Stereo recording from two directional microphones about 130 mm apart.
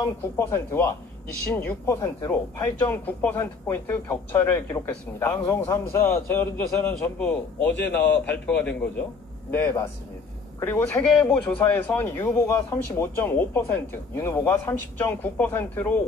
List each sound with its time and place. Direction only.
0.0 s speech: 20° left (ahead or behind)